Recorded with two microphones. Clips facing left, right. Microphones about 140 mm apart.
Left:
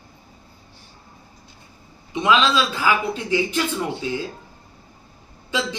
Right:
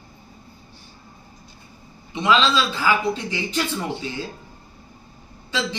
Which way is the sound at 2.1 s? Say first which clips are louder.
Left 1 dB; 15° left (ahead or behind).